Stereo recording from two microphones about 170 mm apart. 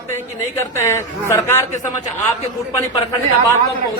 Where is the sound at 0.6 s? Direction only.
15° left (ahead or behind).